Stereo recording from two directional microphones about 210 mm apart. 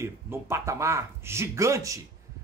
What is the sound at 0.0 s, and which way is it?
Speech, 15° right (ahead or behind).